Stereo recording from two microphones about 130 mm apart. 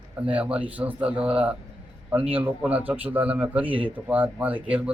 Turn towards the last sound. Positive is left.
turn(degrees=-10)  # may be behind; listen again after turning